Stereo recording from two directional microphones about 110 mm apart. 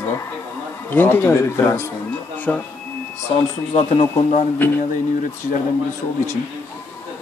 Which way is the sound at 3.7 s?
65° left (ahead or behind).